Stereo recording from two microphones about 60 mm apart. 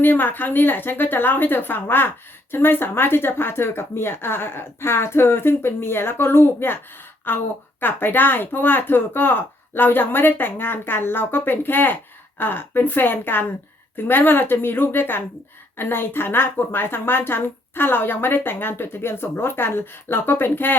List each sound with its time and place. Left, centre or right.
0.0 s a woman's voice: left